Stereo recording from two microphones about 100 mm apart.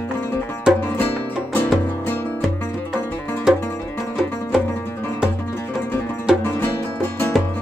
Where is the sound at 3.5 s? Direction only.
5° right (ahead or behind).